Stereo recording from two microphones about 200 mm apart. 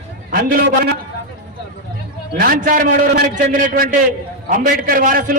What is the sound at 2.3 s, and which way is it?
A man's voice, 45° right (ahead or behind).